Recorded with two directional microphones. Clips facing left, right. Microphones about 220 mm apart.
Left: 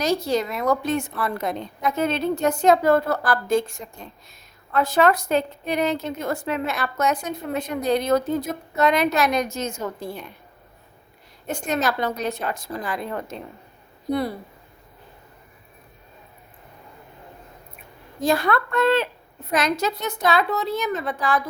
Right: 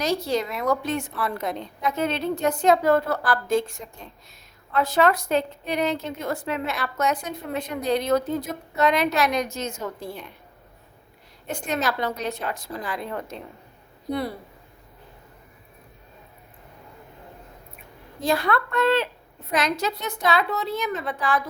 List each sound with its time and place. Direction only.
0.0 s a woman's voice: 45° left (ahead or behind)
11.4 s a woman's voice: 45° left (ahead or behind)
18.2 s a woman's voice: 45° left (ahead or behind)